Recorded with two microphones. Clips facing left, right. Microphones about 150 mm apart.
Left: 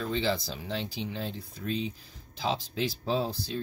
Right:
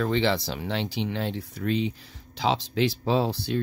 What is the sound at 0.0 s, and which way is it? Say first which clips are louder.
Speech: right 5 dB; 80° right.